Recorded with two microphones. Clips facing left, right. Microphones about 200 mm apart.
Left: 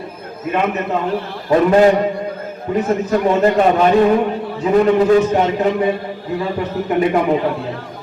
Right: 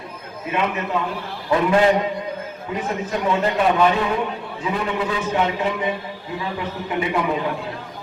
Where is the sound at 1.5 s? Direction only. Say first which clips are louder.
Left 6 dB; 45° left (ahead or behind).